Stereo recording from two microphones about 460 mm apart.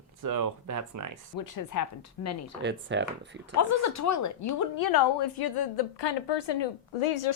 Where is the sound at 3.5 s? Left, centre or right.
Left.